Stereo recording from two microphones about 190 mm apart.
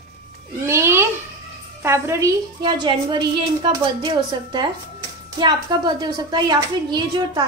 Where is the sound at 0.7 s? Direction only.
15° right (ahead or behind).